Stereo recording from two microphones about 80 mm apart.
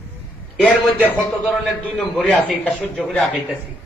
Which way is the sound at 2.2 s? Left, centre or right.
Centre.